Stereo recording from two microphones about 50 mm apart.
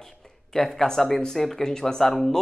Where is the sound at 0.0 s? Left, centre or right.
Centre.